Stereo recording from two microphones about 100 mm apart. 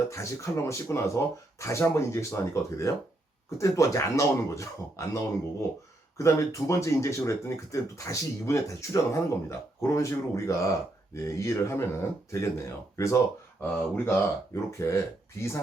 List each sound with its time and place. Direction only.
0.1 s speech: 30° left (ahead or behind)
13.6 s speech: 20° left (ahead or behind)